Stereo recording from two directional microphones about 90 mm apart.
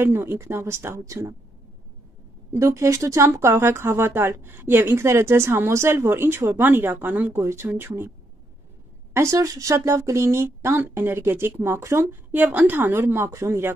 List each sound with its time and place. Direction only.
0.0 s speech: 25° right (ahead or behind)
2.5 s speech: 30° right (ahead or behind)
9.1 s speech: 35° right (ahead or behind)